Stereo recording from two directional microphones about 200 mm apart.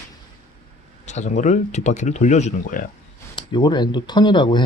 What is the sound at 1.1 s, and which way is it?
Speech, 35° left (ahead or behind).